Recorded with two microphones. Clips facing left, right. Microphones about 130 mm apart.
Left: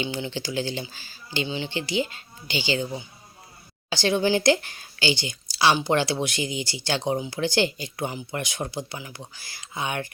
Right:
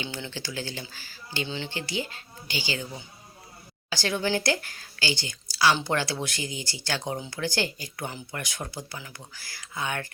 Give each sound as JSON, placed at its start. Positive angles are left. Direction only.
{"t": 0.0, "sound": "speech", "side_deg": 15}